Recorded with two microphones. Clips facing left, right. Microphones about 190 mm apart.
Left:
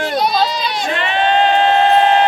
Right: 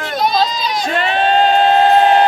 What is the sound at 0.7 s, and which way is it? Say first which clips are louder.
Crowd: right 2 dB; 40° right (ahead or behind).